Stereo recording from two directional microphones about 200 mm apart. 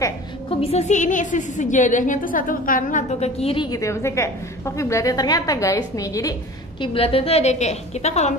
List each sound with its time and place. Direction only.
0.5 s a woman's voice: 30° left (ahead or behind)
6.8 s a woman's voice: 25° left (ahead or behind)